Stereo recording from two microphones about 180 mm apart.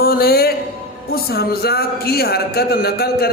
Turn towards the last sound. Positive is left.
turn(degrees=60)  # may be behind; listen again after turning